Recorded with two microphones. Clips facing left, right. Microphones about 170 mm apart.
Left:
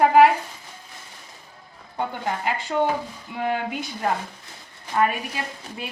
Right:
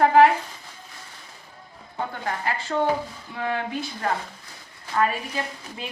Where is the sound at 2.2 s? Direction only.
15° left (ahead or behind).